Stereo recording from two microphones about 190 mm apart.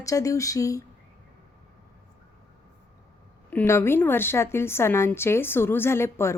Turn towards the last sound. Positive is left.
turn(degrees=15)  # may be behind; listen again after turning